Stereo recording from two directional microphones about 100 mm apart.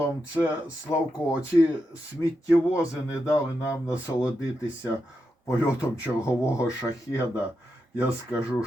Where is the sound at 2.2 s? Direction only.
30° left (ahead or behind).